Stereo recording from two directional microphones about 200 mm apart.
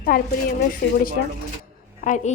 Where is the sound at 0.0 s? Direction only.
45° left (ahead or behind).